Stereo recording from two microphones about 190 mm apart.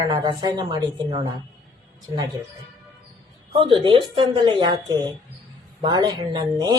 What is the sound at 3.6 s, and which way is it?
A woman's voice, 25° right (ahead or behind).